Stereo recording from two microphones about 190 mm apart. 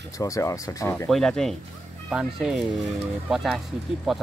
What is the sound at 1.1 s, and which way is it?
Speech, 5° left (ahead or behind).